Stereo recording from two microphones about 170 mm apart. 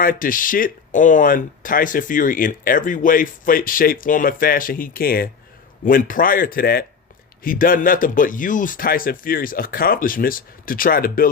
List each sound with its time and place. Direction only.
0.0 s speech: 55° left (ahead or behind)